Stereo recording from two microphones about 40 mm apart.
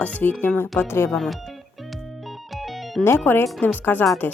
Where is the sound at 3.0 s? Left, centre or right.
Left.